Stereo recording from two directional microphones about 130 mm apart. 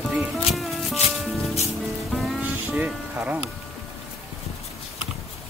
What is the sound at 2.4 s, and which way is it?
Vehicle, 15° right (ahead or behind).